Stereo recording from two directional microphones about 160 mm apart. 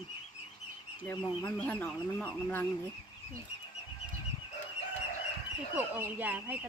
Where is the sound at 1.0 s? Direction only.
15° left (ahead or behind).